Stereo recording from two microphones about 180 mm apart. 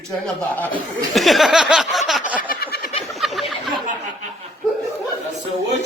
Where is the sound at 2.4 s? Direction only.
55° left (ahead or behind).